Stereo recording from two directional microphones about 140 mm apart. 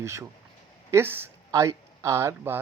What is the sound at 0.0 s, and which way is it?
Speech, 20° right (ahead or behind).